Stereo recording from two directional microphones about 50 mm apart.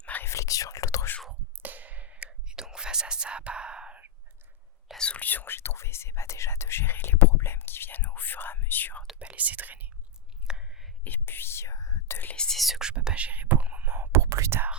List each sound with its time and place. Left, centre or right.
0.0 s whispering: left
0.3 s whispering: left
1.6 s a sound: right
2.5 s whispering: centre
4.9 s whispering: left
5.2 s whispering: left
5.5 s whispering: left
9.1 s speech: right
10.4 s whispering: centre
11.0 s speech: left
12.5 s speech: centre
12.8 s whispering: centre; by 14.2 s right
14.2 s whispering: right